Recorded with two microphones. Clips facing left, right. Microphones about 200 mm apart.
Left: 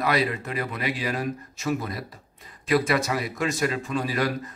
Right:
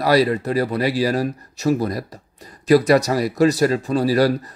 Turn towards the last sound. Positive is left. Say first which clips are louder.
# right 9 dB
turn(degrees=-35)  # may be behind; listen again after turning